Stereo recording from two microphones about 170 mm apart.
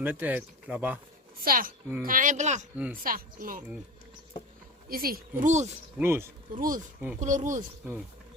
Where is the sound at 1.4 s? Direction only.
55° right (ahead or behind).